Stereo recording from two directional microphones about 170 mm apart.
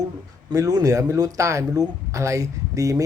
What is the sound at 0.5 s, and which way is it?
Speech, 20° right (ahead or behind).